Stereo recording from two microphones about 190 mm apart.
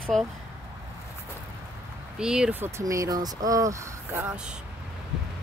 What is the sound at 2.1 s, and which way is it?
Speech, 5° right (ahead or behind).